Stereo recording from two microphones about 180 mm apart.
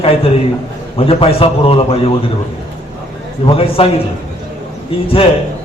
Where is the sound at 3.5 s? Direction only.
30° left (ahead or behind).